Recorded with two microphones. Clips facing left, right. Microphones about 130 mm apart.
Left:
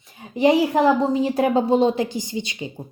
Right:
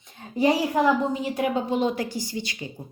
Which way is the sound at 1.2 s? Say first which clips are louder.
Left 6 dB; 35° left (ahead or behind).